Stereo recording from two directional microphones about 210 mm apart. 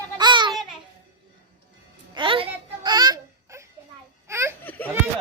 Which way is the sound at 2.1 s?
25° right (ahead or behind).